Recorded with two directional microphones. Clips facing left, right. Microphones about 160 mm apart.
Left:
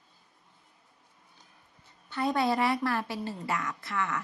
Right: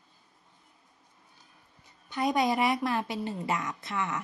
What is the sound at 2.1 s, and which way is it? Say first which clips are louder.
A woman's voice: right 1 dB; 15° right (ahead or behind).